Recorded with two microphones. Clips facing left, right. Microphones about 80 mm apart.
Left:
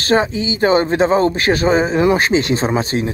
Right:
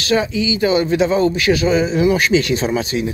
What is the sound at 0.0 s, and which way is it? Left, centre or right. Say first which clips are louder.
Speech: left 2 dB; left.